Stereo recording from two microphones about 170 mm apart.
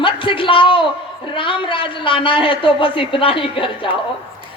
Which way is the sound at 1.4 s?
30° left (ahead or behind).